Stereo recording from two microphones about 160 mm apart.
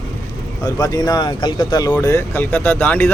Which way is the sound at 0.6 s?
25° left (ahead or behind).